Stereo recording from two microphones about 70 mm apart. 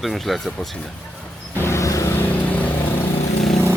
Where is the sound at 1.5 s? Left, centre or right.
Left.